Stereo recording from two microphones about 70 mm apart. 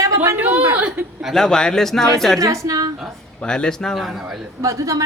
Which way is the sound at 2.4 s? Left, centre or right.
Right.